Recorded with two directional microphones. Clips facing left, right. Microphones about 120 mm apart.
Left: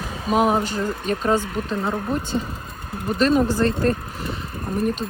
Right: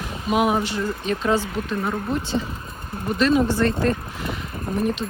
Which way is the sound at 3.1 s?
40° left (ahead or behind).